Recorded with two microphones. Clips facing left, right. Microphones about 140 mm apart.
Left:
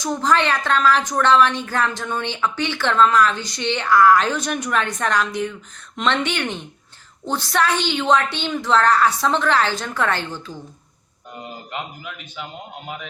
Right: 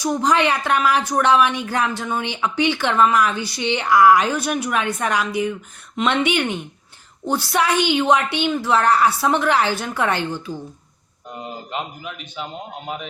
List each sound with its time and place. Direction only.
0.0 s a woman's voice: 15° right (ahead or behind)